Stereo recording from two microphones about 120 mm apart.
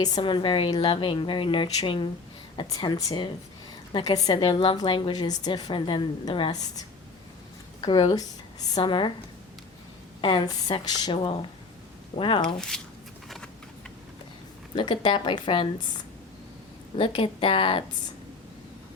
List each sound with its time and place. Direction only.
0.0 s a woman's voice: 40° left (ahead or behind)
4.4 s a woman's voice: 40° left (ahead or behind)
10.2 s a woman's voice: 45° left (ahead or behind)
12.5 s speech: 5° left (ahead or behind)
13.2 s a sound: centre (ahead or behind)
14.8 s a woman's voice: 40° left (ahead or behind)
17.0 s a woman's voice: 45° left (ahead or behind)